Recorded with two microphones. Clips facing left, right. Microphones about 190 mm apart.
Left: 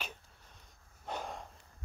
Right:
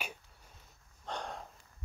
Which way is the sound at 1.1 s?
5° left (ahead or behind).